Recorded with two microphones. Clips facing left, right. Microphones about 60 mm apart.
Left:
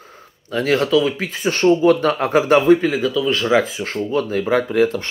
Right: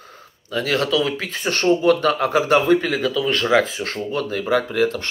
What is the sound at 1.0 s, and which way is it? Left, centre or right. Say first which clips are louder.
Speech: left 3 dB; centre.